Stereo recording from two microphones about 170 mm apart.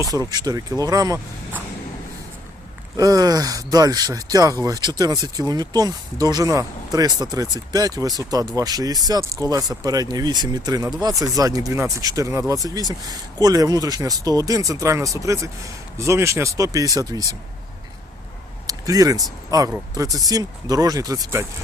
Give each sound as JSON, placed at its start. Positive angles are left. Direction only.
{"t": 0.0, "sound": "speech", "side_deg": -20}
{"t": 3.0, "sound": "speech", "side_deg": -20}
{"t": 18.7, "sound": "speech", "side_deg": -20}